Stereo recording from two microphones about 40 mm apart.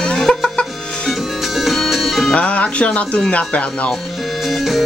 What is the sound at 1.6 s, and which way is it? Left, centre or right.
Music, centre.